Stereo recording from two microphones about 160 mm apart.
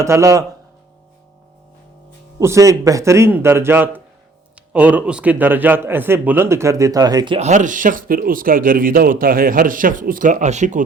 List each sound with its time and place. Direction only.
0.0 s a man's voice: 20° right (ahead or behind)
2.4 s a man's voice: 20° right (ahead or behind)
7.3 s speech: 45° right (ahead or behind)